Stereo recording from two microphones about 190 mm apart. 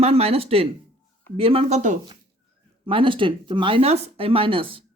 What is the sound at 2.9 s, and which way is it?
Speech, 25° right (ahead or behind).